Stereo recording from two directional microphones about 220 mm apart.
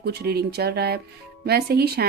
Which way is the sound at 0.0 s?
45° right (ahead or behind).